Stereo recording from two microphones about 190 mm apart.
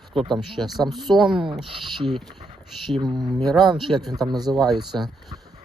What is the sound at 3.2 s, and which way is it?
Speech, centre (ahead or behind).